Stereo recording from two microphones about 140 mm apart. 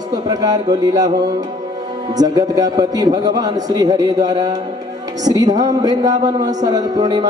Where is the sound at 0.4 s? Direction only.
25° right (ahead or behind).